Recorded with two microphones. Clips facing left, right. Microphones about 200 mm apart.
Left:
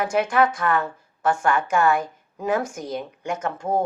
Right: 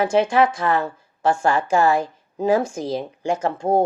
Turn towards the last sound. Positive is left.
turn(degrees=-30)  # may be behind; listen again after turning